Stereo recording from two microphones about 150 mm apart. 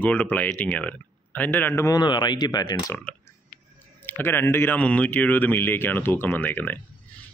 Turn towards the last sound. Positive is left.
turn(degrees=10)  # may be behind; listen again after turning